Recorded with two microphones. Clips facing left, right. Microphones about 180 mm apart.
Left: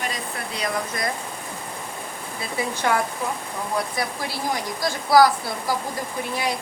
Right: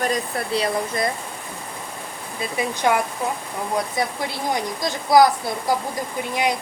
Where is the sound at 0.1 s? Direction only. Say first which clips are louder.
Right 8 dB; 35° right (ahead or behind).